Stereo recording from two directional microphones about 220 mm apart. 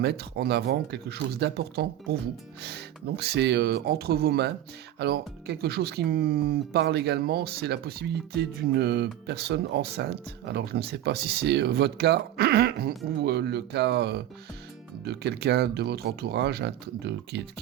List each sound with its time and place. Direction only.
0.0 s speech: 50° right (ahead or behind)